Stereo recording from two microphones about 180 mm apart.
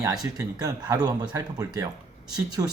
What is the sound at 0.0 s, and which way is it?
Speech, 20° right (ahead or behind).